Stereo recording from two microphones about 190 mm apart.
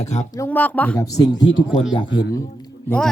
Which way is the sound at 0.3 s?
10° left (ahead or behind).